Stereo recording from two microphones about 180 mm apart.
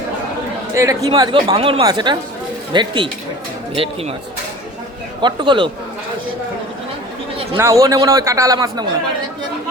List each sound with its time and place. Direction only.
0.7 s a man's voice: 15° right (ahead or behind)
5.2 s a man's voice: 25° right (ahead or behind)
7.5 s a man's voice: 15° right (ahead or behind)